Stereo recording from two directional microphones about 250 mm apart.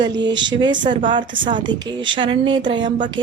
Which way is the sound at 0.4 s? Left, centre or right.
Centre.